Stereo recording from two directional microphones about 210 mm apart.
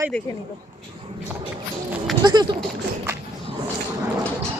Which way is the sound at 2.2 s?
20° right (ahead or behind).